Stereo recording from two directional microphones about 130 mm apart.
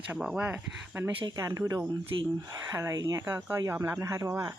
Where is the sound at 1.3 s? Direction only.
25° right (ahead or behind).